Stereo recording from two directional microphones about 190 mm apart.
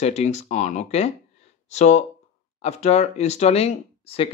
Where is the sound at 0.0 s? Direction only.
35° left (ahead or behind).